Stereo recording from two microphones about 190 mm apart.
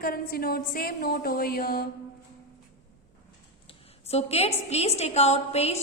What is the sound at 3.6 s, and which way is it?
A woman's voice, 35° left (ahead or behind).